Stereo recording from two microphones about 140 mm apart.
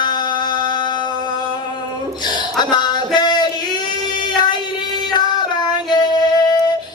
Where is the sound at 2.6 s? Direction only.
30° left (ahead or behind).